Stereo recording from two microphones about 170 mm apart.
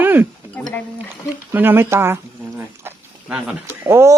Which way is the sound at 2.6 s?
10° right (ahead or behind).